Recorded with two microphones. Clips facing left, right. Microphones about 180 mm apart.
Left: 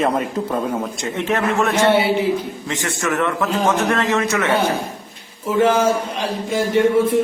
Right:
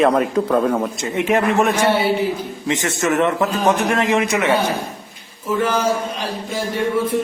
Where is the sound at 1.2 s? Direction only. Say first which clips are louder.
Right 3 dB; 15° right (ahead or behind).